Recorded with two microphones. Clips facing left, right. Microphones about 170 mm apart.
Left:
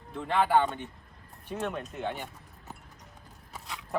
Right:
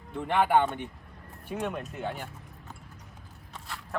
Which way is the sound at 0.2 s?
10° right (ahead or behind).